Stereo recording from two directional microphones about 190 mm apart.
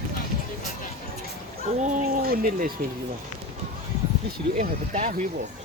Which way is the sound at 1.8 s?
45° right (ahead or behind).